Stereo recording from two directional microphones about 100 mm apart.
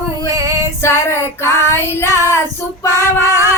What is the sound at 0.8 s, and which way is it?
Child singing, 25° left (ahead or behind).